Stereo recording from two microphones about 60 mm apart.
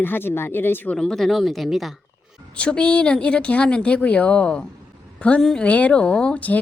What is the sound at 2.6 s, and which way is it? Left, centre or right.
A woman's voice, centre.